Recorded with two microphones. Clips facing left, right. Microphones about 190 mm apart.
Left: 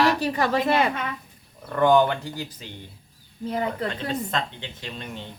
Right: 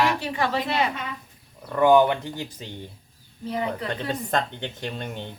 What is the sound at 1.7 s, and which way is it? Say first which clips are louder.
Speech: right 1 dB; 10° right (ahead or behind).